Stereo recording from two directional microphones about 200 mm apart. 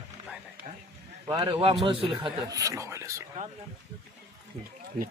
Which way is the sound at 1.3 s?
25° right (ahead or behind).